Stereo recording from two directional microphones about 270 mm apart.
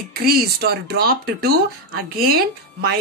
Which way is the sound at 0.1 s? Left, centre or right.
Right.